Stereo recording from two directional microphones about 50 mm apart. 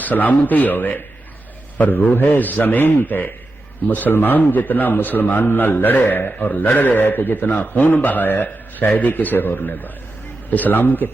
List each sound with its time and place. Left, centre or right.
0.0 s a man's voice: left